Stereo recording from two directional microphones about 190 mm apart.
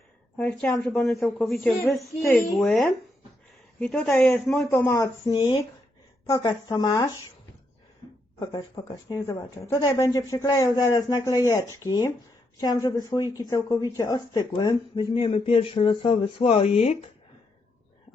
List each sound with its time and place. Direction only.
0.3 s speech: 5° left (ahead or behind)
8.4 s speech: 20° left (ahead or behind); by 17.0 s 35° left (ahead or behind)